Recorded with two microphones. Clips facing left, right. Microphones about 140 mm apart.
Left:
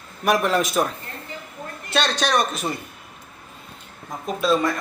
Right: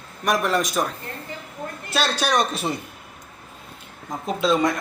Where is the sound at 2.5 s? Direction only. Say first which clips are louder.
Right 1 dB; 30° right (ahead or behind).